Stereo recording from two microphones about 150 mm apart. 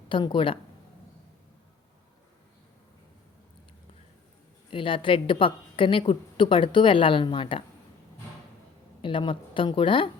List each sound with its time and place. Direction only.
0.1 s a woman's voice: 35° left (ahead or behind)
4.7 s a woman's voice: 35° left (ahead or behind)
9.0 s a woman's voice: 35° left (ahead or behind)